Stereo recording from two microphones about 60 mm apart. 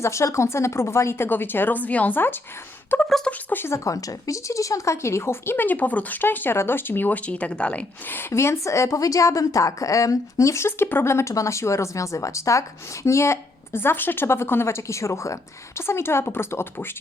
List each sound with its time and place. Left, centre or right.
0.0 s speech: left
1.3 s speech: left
2.1 s a woman's voice: left
3.3 s speech: centre
3.7 s a woman's voice: left
5.6 s speech: left
8.0 s a woman's voice: left
8.3 s a woman's voice: left